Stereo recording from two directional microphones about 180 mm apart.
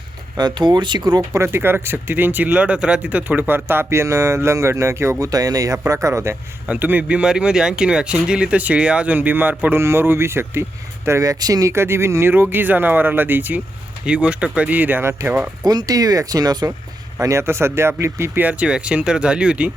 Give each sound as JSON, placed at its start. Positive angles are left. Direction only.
{"t": 0.3, "sound": "speech", "side_deg": -25}